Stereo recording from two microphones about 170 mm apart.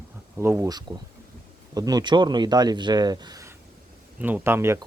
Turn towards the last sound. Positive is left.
turn(degrees=-15)  # may be behind; listen again after turning